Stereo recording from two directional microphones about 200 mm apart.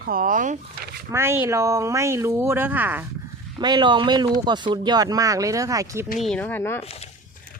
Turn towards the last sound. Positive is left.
turn(degrees=10)  # may be behind; listen again after turning